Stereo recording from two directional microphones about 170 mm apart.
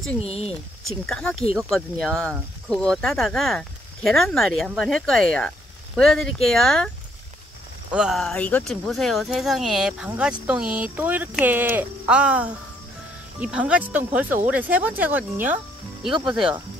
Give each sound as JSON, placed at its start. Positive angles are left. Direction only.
{"t": 0.2, "sound": "speech", "side_deg": 35}
{"t": 1.0, "sound": "speech", "side_deg": 5}
{"t": 7.9, "sound": "speech", "side_deg": -5}
{"t": 16.1, "sound": "speech", "side_deg": -30}